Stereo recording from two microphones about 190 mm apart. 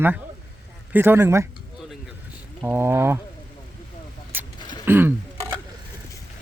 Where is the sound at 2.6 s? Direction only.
10° right (ahead or behind).